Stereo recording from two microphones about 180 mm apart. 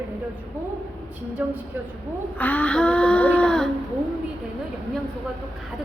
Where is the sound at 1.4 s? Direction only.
10° right (ahead or behind).